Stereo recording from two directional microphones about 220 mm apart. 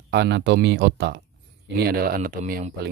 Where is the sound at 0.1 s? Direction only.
50° right (ahead or behind).